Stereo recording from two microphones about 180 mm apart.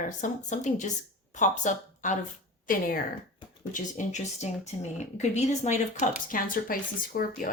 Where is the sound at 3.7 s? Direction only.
45° left (ahead or behind).